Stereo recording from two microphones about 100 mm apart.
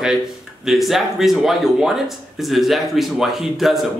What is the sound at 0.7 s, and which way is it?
Speech, centre (ahead or behind).